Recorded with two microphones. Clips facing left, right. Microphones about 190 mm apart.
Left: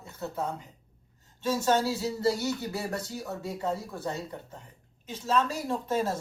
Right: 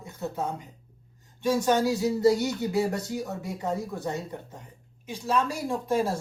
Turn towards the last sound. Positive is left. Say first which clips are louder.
# right 3 dB
turn(degrees=-10)  # may be behind; listen again after turning